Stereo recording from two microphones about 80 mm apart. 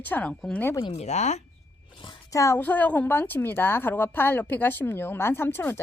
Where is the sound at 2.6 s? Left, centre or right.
Left.